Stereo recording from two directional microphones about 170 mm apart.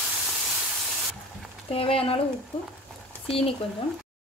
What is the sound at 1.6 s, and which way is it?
Speech, 35° left (ahead or behind).